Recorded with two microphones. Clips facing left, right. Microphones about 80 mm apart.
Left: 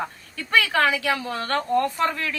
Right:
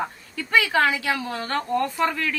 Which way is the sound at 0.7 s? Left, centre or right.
Centre.